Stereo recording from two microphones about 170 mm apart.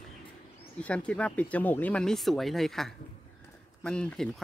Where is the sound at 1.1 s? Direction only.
10° left (ahead or behind).